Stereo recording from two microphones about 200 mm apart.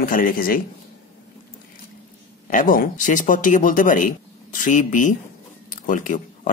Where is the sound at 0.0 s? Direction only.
45° left (ahead or behind).